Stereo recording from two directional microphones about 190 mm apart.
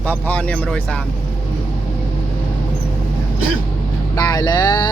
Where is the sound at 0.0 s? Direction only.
10° left (ahead or behind).